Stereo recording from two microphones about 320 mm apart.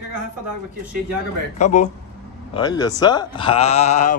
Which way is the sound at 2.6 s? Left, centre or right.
Centre.